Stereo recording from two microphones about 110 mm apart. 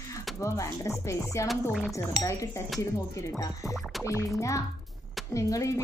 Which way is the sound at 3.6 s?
Centre (ahead or behind).